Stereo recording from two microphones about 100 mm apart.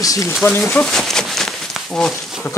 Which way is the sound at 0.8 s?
Centre (ahead or behind).